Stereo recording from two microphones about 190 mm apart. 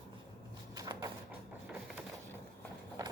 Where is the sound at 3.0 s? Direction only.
20° right (ahead or behind).